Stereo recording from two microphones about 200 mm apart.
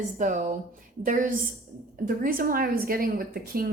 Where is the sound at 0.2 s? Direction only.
40° right (ahead or behind).